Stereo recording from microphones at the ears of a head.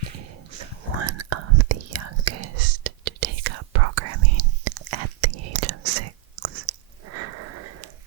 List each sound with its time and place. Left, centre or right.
0.1 s whispering: right